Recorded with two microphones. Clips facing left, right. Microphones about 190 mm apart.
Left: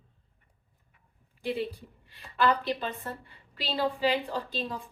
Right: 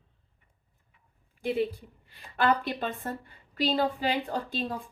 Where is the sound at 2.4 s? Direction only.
50° right (ahead or behind).